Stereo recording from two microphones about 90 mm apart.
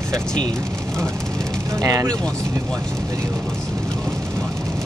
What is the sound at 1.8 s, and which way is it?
Speech, 40° right (ahead or behind).